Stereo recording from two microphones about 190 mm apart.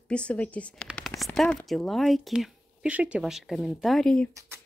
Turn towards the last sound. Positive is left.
turn(degrees=5)  # may be behind; listen again after turning